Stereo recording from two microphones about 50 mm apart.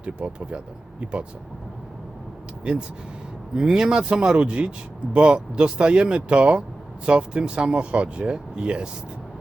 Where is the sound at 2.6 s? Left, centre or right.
Right.